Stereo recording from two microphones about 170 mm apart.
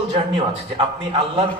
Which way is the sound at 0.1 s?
35° right (ahead or behind).